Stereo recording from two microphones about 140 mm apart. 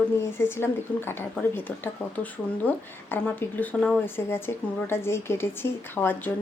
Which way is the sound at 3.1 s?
10° left (ahead or behind).